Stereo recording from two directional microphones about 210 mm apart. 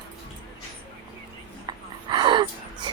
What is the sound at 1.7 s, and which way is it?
Gasp, 20° right (ahead or behind).